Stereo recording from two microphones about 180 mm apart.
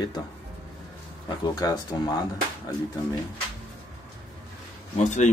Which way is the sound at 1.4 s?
20° left (ahead or behind).